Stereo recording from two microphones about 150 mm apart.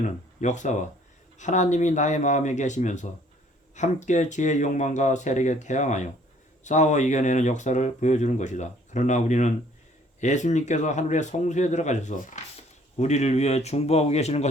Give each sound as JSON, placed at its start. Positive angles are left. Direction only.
{"t": 0.4, "sound": "speech", "side_deg": 55}